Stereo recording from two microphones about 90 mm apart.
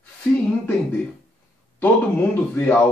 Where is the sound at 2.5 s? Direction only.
20° left (ahead or behind).